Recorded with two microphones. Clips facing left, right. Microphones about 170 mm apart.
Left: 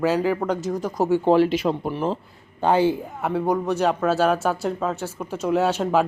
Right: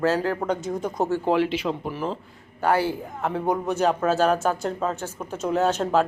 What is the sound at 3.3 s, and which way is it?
Speech, centre (ahead or behind).